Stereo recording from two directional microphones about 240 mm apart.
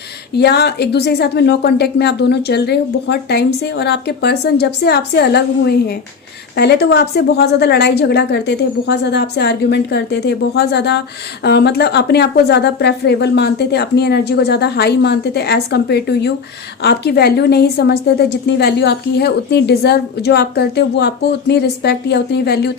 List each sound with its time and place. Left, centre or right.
0.3 s a woman's voice: left